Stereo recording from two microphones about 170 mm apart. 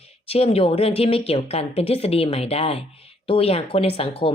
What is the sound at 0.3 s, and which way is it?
Speech, 35° left (ahead or behind).